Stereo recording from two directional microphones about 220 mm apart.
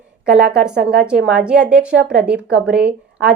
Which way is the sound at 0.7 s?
45° right (ahead or behind).